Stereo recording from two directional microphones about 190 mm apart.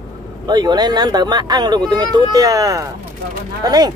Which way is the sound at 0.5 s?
20° right (ahead or behind).